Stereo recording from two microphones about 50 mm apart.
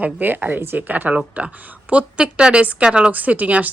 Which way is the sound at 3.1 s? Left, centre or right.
Right.